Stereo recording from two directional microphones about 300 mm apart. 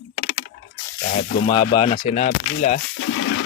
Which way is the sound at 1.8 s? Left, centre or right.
Centre.